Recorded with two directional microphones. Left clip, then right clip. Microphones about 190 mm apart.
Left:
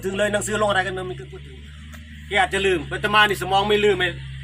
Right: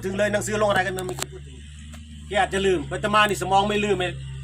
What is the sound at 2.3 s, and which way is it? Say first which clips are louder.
Speech: left 2 dB; 50° right (ahead or behind).